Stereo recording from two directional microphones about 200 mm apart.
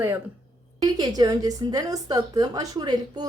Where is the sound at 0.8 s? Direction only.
20° right (ahead or behind).